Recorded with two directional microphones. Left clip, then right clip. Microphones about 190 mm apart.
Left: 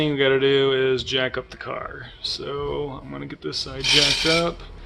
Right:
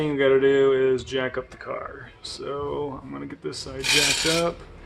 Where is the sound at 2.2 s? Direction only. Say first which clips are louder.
Left 3 dB; 20° left (ahead or behind).